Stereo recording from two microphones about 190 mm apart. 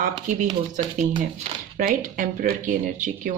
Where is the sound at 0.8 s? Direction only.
45° right (ahead or behind).